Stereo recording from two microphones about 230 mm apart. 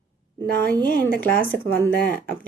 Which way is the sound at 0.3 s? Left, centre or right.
Right.